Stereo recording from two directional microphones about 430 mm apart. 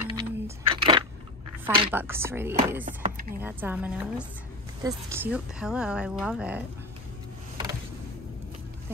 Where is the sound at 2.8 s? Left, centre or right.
Centre.